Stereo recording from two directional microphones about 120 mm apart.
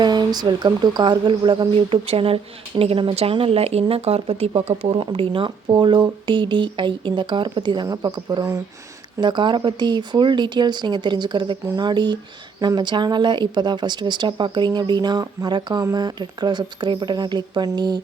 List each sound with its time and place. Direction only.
0.0 s speech: 35° right (ahead or behind)